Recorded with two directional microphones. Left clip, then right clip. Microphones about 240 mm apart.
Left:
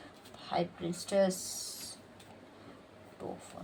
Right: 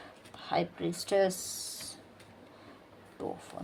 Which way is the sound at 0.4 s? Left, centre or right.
Right.